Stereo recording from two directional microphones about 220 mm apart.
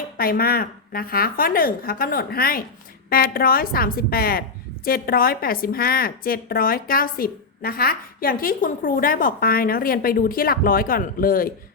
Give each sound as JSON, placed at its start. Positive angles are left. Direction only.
{"t": 0.2, "sound": "a woman's voice", "side_deg": 40}